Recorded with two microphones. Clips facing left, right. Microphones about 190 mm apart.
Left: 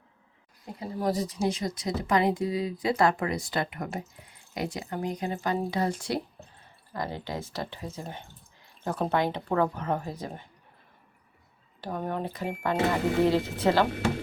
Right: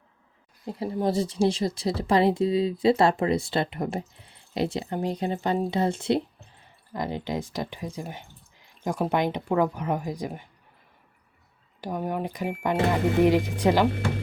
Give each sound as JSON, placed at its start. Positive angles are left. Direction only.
{"t": 0.6, "sound": "speech", "side_deg": -30}
{"t": 11.8, "sound": "speech", "side_deg": -10}